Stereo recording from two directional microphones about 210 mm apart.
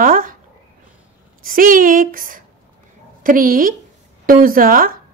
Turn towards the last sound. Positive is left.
turn(degrees=-45)  # may be behind; listen again after turning